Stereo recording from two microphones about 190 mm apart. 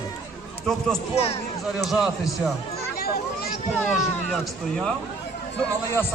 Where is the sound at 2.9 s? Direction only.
55° left (ahead or behind).